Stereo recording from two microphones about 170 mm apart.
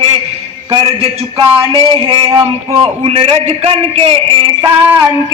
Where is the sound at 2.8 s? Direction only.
35° right (ahead or behind).